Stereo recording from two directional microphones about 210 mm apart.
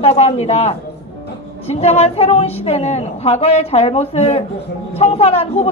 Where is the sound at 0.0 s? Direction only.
30° left (ahead or behind).